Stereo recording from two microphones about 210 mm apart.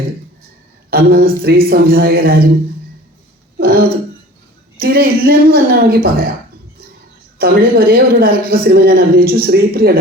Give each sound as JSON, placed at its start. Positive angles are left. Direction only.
{"t": 0.9, "sound": "a woman's voice", "side_deg": -45}
{"t": 3.6, "sound": "a woman's voice", "side_deg": -45}
{"t": 7.3, "sound": "a woman's voice", "side_deg": -45}